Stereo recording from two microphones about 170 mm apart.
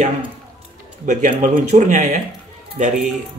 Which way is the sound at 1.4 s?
45° right (ahead or behind).